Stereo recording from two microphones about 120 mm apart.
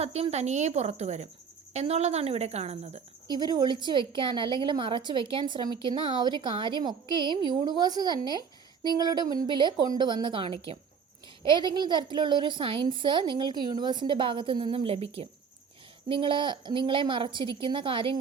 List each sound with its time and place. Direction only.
0.0 s a woman's voice: 60° right (ahead or behind)
3.3 s a woman's voice: 35° right (ahead or behind); by 15.3 s 55° right (ahead or behind)
16.0 s a woman's voice: 45° right (ahead or behind)